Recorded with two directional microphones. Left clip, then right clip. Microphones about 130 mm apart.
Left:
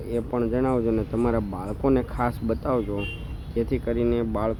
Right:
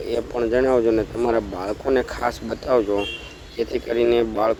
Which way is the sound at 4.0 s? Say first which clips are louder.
Right 9 dB; 50° right (ahead or behind).